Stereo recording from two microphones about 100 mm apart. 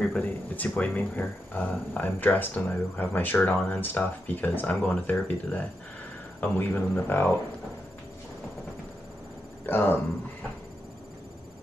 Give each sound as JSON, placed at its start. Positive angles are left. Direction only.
{"t": 0.1, "sound": "speech", "side_deg": 20}
{"t": 9.7, "sound": "speech", "side_deg": 20}